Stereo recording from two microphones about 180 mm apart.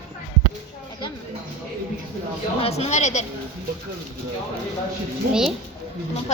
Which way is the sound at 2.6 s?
35° left (ahead or behind).